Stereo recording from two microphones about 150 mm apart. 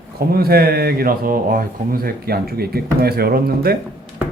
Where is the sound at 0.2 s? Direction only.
90° right.